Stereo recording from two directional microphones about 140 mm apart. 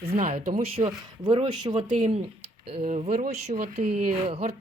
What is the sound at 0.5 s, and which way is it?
Speech, 45° right (ahead or behind).